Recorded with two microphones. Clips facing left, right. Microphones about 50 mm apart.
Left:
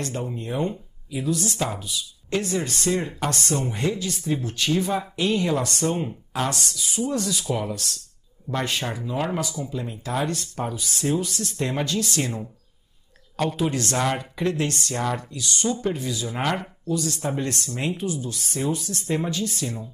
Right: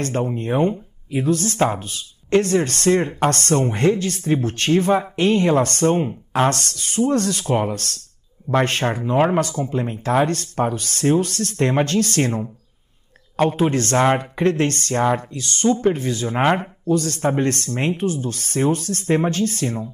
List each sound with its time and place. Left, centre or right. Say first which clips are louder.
0.0 s speech: right 7 dB; right
16.9 s speech: right 7 dB; right